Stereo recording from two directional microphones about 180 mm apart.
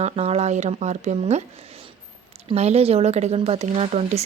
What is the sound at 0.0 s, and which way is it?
Speech, 35° right (ahead or behind).